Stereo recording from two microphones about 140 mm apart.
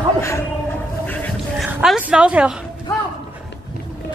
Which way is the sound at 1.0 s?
10° left (ahead or behind).